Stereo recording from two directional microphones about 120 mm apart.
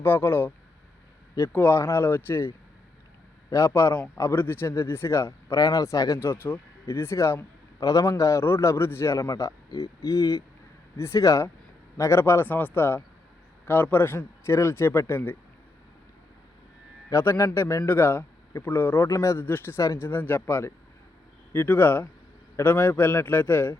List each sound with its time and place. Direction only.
0.0 s a man's voice: 20° left (ahead or behind)
3.5 s speech: 25° left (ahead or behind)
17.1 s a man's voice: 25° left (ahead or behind)